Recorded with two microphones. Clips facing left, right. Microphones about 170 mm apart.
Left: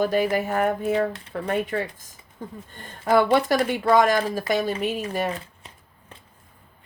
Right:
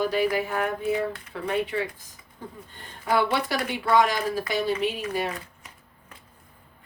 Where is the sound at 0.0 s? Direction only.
45° left (ahead or behind).